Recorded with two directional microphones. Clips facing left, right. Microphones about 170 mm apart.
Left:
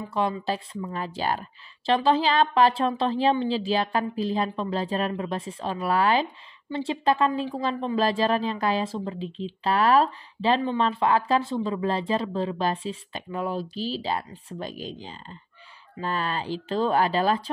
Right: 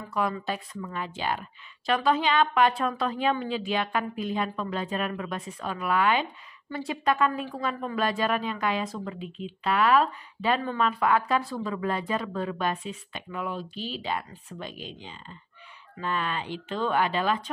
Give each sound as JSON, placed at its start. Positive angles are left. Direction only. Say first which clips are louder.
{"t": 0.1, "sound": "a woman's voice", "louder": "left 2 dB", "side_deg": 30}